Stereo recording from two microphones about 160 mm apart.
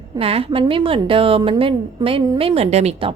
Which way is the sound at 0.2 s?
35° right (ahead or behind).